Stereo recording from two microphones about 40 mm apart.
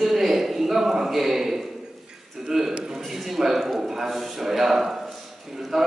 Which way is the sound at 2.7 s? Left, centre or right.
Centre.